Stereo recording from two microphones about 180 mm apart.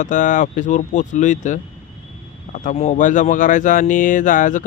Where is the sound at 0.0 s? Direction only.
45° left (ahead or behind).